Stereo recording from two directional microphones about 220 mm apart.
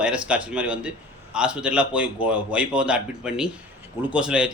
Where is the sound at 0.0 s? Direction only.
5° right (ahead or behind).